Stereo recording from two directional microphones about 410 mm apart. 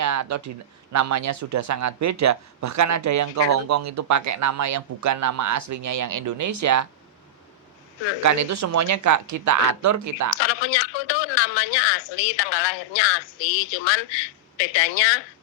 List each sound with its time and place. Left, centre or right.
0.0 s speech: right
8.2 s speech: right
10.3 s speech: left